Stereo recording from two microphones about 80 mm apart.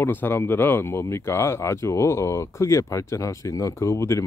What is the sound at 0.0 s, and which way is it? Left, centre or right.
Speech, left.